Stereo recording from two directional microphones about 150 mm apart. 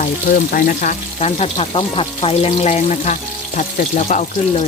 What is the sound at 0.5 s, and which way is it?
Speech, 60° left (ahead or behind).